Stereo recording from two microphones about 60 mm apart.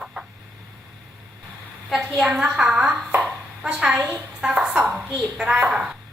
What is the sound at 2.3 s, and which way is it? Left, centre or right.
A woman's voice, centre.